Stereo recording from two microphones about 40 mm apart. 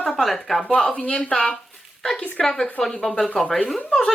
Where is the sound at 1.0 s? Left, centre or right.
Left.